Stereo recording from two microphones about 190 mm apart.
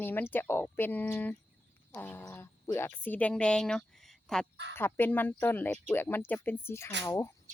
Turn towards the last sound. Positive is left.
turn(degrees=15)  # may be behind; listen again after turning